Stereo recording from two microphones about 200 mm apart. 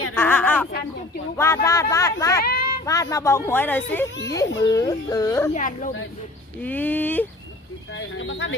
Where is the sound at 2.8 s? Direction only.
15° left (ahead or behind).